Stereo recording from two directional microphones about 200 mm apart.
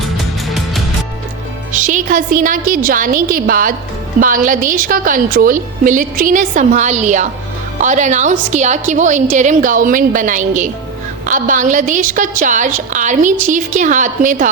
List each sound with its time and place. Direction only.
1.7 s a woman's voice: 40° right (ahead or behind)